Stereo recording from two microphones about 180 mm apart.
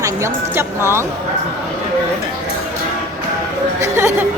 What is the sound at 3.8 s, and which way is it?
Chatter, 15° right (ahead or behind).